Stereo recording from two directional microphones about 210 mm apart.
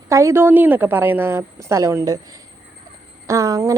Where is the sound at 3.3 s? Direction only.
15° right (ahead or behind).